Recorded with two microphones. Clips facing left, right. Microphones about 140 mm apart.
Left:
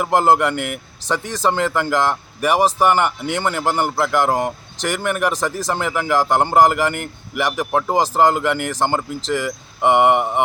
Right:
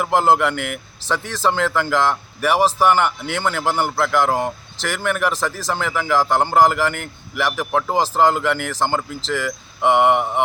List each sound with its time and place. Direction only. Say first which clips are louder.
0.0 s speech: left 1 dB; 10° left (ahead or behind)